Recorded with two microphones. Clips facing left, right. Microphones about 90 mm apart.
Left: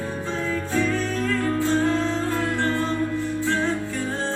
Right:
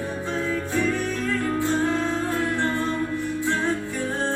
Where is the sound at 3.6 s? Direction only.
15° right (ahead or behind).